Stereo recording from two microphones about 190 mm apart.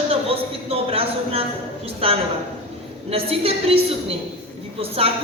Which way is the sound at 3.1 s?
30° right (ahead or behind).